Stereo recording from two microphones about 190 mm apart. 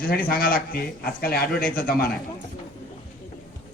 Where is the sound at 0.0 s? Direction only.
50° left (ahead or behind).